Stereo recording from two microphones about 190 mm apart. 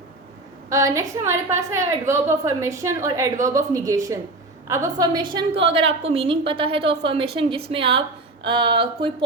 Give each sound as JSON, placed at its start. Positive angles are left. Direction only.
{"t": 0.7, "sound": "a woman's voice", "side_deg": -15}